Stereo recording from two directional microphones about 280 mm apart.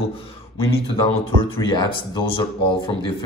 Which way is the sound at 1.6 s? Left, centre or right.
Centre.